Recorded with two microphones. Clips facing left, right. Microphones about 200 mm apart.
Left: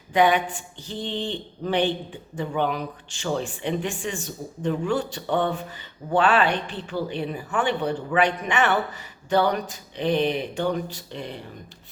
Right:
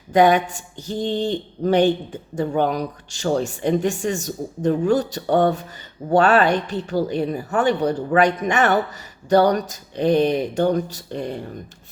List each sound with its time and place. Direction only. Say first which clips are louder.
0.1 s speech: right 5 dB; 40° right (ahead or behind)